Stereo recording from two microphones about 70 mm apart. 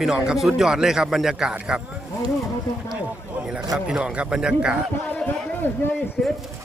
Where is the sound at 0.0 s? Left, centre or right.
Centre.